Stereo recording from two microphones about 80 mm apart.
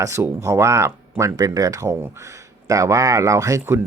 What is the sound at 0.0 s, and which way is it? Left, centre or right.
Speech, right.